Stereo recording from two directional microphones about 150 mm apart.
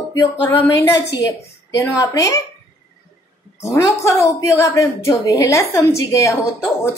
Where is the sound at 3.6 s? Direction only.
20° left (ahead or behind).